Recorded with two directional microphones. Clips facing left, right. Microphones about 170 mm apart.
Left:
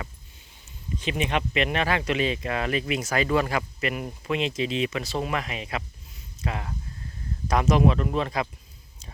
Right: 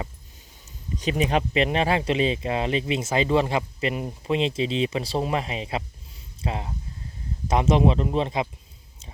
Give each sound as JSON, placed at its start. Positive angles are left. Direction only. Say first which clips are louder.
{"t": 0.9, "sound": "speech", "louder": "right 4 dB", "side_deg": -40}